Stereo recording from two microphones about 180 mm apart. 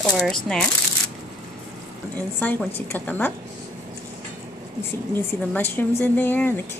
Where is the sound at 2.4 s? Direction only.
10° left (ahead or behind).